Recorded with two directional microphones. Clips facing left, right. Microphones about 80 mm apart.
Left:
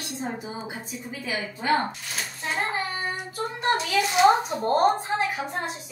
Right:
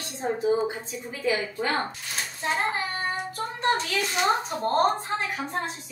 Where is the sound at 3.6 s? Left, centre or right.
Centre.